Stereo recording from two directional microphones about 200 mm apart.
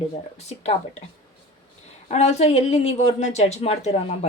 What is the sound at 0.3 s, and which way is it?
Speech, 35° left (ahead or behind).